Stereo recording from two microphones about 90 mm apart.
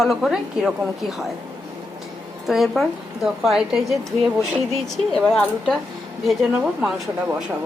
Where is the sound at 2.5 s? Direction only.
Centre (ahead or behind).